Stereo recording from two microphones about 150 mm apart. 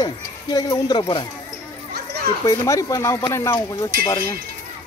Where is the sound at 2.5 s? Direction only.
20° left (ahead or behind).